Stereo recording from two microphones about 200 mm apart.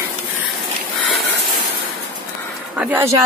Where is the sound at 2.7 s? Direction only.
10° right (ahead or behind).